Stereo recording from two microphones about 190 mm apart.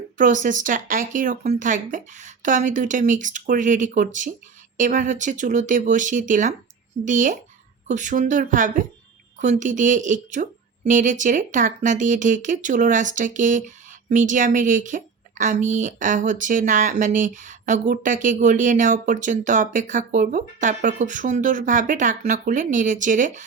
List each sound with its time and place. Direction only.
0.4 s speech: 45° right (ahead or behind)